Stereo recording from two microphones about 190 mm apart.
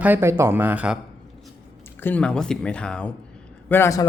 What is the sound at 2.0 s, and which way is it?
Speech, 5° left (ahead or behind).